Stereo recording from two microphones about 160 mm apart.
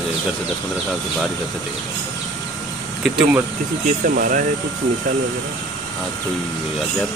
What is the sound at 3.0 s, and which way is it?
Speech, 5° right (ahead or behind).